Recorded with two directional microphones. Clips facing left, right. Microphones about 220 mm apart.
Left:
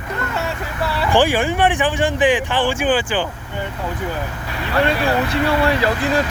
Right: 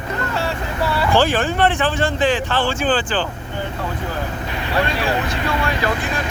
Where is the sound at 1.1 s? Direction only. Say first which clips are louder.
Left 2 dB; 15° left (ahead or behind).